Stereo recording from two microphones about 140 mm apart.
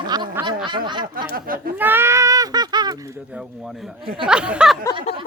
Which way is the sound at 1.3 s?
90° right.